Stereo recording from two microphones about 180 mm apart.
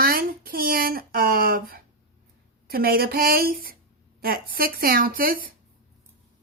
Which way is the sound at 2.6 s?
55° right (ahead or behind).